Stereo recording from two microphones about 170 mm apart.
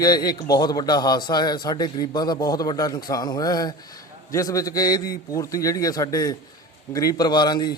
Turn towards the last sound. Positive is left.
turn(degrees=25)  # may be behind; listen again after turning